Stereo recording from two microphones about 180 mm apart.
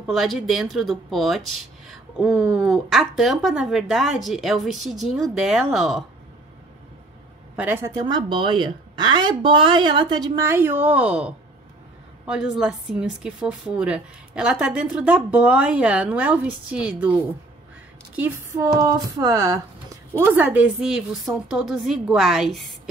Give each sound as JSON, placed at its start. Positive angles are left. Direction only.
{"t": 0.0, "sound": "a woman's voice", "side_deg": 0}
{"t": 7.5, "sound": "a woman's voice", "side_deg": -10}
{"t": 12.5, "sound": "a woman's voice", "side_deg": -5}